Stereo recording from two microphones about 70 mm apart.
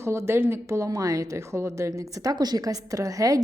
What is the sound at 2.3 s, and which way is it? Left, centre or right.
A woman's voice, right.